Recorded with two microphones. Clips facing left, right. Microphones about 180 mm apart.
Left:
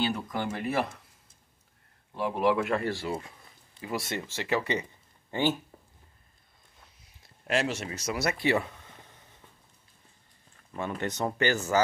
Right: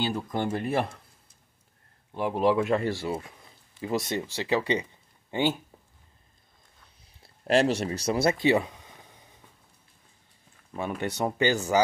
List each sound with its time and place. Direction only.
0.1 s speech: 30° right (ahead or behind)
2.1 s speech: 20° right (ahead or behind)
7.2 s speech: 35° right (ahead or behind); by 9.2 s 10° right (ahead or behind)
10.7 s speech: 10° right (ahead or behind)